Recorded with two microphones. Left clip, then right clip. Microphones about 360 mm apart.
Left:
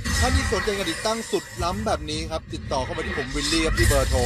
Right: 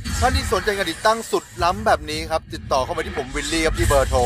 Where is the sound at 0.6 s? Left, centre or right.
Right.